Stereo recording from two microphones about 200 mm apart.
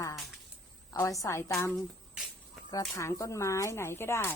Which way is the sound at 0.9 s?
15° left (ahead or behind).